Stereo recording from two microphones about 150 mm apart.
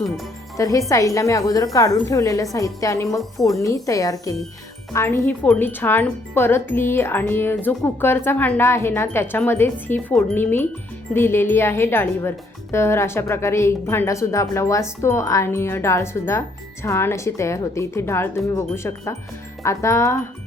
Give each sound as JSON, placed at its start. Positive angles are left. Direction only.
{"t": 0.5, "sound": "a woman's voice", "side_deg": 20}